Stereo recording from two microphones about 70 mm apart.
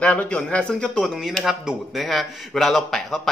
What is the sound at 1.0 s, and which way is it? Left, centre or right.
A man's voice, centre.